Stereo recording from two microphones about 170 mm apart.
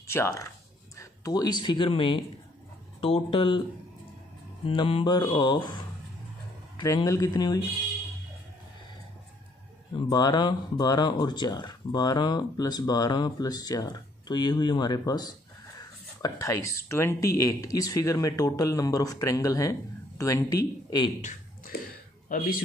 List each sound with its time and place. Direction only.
0.0 s speech: 15° left (ahead or behind)
4.6 s speech: 35° left (ahead or behind)
6.8 s speech: 20° left (ahead or behind)
9.9 s speech: 25° left (ahead or behind)